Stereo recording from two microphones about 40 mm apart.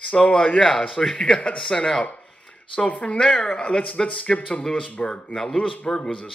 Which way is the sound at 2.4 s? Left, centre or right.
Left.